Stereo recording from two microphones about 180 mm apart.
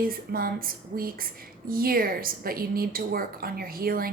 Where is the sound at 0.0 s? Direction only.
55° right (ahead or behind).